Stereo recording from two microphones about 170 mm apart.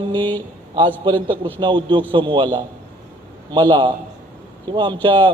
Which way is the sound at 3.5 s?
30° right (ahead or behind).